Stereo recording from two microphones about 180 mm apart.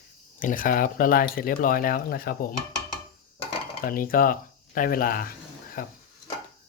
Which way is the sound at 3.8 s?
55° left (ahead or behind).